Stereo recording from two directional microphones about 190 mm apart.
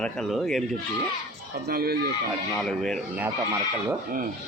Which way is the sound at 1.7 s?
50° right (ahead or behind).